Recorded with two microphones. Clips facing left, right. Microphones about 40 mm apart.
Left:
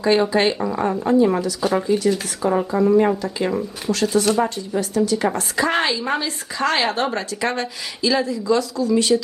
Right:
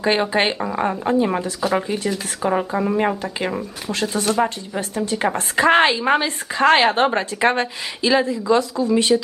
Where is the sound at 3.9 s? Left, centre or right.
Centre.